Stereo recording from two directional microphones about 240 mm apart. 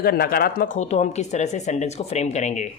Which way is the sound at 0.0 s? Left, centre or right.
Left.